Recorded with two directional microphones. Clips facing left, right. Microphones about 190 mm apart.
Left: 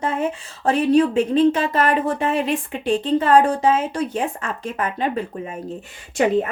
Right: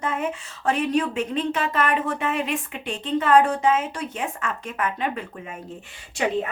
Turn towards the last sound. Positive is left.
turn(degrees=45)  # may be behind; listen again after turning